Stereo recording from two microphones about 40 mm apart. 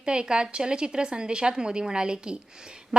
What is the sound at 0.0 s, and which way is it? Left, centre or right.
A woman's voice, right.